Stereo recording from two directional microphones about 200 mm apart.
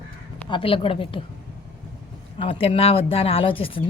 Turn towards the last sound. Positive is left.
turn(degrees=25)  # may be behind; listen again after turning